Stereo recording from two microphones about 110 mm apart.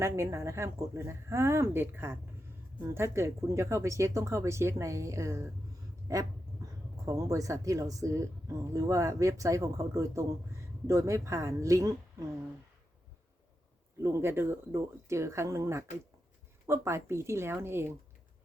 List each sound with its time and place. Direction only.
0.0 s speech: 25° right (ahead or behind)
14.0 s speech: 25° right (ahead or behind)